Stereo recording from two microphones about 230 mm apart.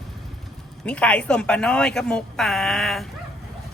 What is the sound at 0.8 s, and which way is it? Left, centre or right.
Speech, centre.